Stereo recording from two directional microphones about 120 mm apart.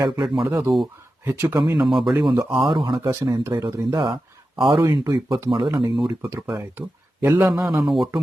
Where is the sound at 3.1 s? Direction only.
25° right (ahead or behind).